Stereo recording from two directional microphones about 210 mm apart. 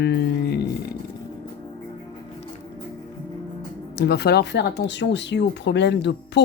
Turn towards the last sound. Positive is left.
turn(degrees=55)  # may be behind; listen again after turning